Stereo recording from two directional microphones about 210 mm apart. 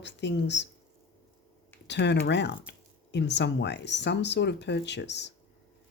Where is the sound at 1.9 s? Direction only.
55° left (ahead or behind).